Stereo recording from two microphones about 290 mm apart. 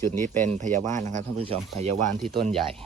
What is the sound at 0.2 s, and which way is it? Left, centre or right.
Speech, right.